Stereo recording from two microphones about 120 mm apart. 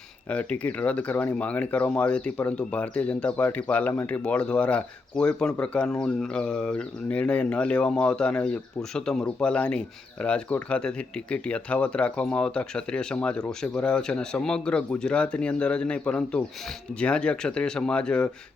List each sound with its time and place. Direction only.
0.3 s speech: 10° left (ahead or behind)